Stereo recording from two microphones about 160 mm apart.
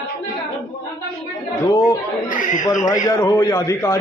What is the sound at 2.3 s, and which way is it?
Speech, 55° left (ahead or behind).